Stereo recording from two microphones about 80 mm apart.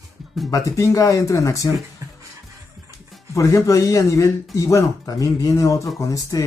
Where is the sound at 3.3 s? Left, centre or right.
Left.